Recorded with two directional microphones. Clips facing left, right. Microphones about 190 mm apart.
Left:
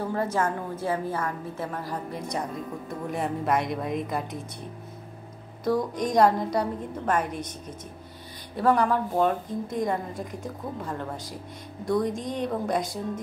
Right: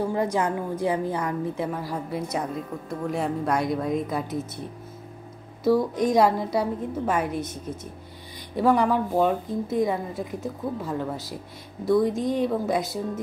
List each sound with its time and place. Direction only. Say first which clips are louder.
0.1 s a woman's voice: right 2 dB; 15° right (ahead or behind); by 4.4 s centre (ahead or behind)
5.6 s a woman's voice: right 4 dB; 5° right (ahead or behind)